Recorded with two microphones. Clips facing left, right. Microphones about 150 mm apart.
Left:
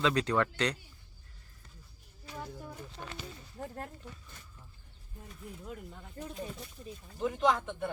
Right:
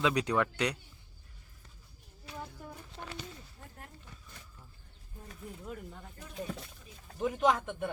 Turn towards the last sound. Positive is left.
turn(degrees=-10)  # may be behind; listen again after turning